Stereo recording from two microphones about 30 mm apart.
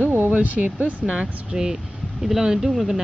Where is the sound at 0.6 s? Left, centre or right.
Right.